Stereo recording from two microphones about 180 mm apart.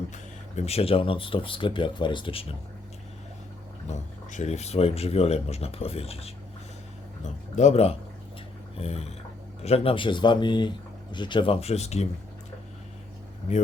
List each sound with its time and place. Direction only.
0.1 s speech: 40° left (ahead or behind)
3.8 s speech: 40° left (ahead or behind)
7.5 s speech: 40° left (ahead or behind)